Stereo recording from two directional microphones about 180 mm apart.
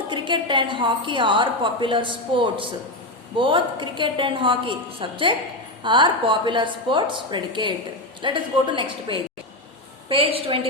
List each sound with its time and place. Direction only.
0.1 s a woman's voice: 25° right (ahead or behind)